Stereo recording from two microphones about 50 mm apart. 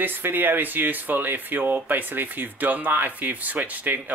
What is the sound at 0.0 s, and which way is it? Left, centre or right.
Speech, right.